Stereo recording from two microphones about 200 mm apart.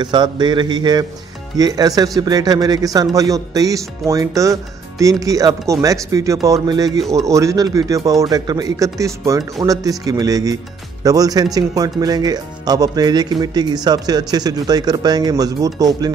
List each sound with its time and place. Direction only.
0.0 s a man's voice: 20° right (ahead or behind)